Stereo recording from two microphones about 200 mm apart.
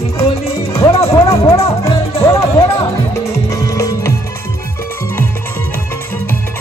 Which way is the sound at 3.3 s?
15° left (ahead or behind).